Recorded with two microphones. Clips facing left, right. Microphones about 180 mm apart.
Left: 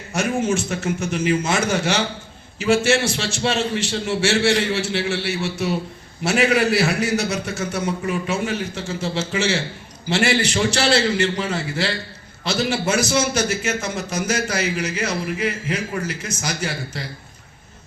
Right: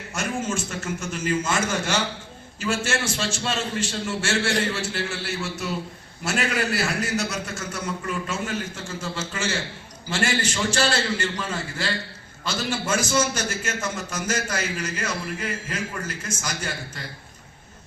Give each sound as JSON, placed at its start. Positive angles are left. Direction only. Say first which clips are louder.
{"t": 0.1, "sound": "a man's voice", "louder": "left 7 dB", "side_deg": 70}